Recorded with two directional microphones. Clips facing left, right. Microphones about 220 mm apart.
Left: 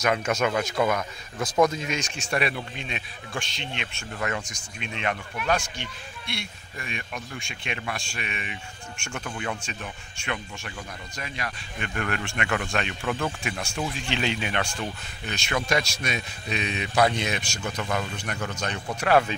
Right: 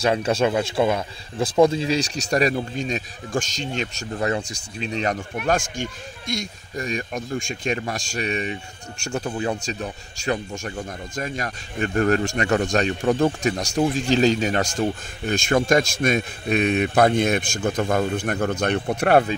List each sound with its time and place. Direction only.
0.0 s speech: 30° right (ahead or behind); by 19.2 s 55° right (ahead or behind)